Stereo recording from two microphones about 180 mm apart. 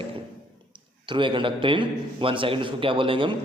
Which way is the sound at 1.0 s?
25° right (ahead or behind).